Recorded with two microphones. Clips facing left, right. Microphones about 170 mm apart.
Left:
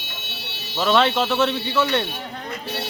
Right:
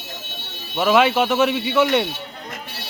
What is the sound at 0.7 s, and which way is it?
Speech, 10° right (ahead or behind).